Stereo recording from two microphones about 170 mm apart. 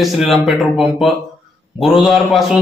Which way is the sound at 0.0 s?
Centre (ahead or behind).